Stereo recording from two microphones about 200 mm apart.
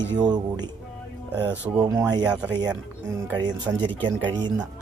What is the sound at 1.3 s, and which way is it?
Speech, 10° right (ahead or behind).